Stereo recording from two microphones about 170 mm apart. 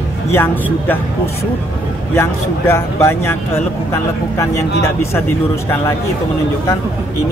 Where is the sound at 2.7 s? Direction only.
15° left (ahead or behind).